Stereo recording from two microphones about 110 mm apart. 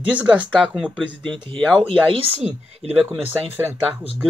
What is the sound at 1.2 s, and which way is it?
Speech, 50° right (ahead or behind).